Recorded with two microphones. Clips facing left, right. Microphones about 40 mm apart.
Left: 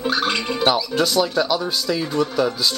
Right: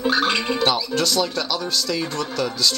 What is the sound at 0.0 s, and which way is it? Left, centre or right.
Music, centre.